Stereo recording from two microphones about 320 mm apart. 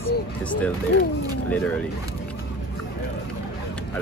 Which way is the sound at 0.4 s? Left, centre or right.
Centre.